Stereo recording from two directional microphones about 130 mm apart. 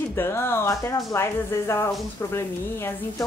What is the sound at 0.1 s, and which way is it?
Speech, 20° left (ahead or behind).